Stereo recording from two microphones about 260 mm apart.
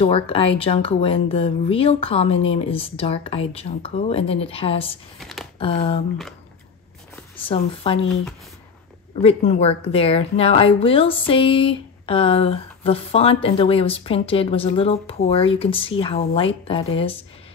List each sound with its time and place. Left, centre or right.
0.0 s speech: left
5.2 s a sound: centre
5.6 s speech: left
7.4 s speech: left
9.1 s speech: left